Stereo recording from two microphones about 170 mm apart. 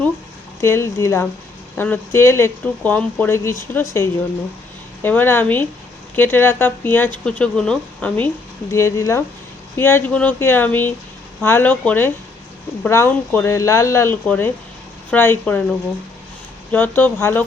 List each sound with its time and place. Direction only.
0.6 s speech: 15° left (ahead or behind)
16.7 s speech: 10° left (ahead or behind)